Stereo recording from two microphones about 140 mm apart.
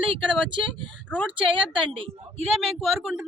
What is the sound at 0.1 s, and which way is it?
Speech, 35° right (ahead or behind).